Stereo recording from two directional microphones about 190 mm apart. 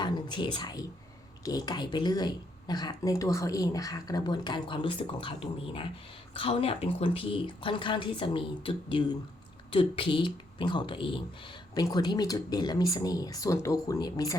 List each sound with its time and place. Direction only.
0.0 s speech: 25° left (ahead or behind)
6.3 s speech: 30° left (ahead or behind)